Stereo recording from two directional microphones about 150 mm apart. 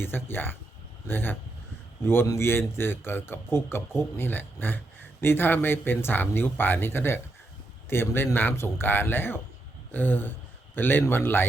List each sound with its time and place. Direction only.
0.0 s a man's voice: 15° left (ahead or behind)